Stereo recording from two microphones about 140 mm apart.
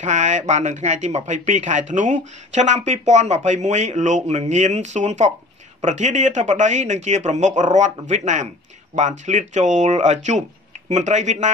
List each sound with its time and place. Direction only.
0.0 s speech: 60° right (ahead or behind)